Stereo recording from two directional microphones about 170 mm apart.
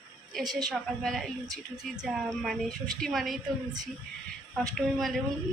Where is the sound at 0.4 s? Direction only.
25° right (ahead or behind).